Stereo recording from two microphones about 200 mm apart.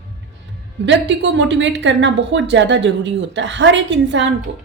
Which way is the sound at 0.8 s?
65° right (ahead or behind).